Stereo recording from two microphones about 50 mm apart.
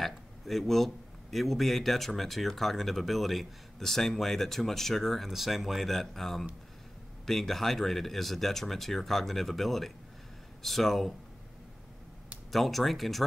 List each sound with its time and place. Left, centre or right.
0.0 s a man's voice: centre
12.5 s a man's voice: centre